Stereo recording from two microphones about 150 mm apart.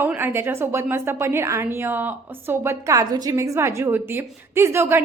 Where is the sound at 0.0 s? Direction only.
15° right (ahead or behind).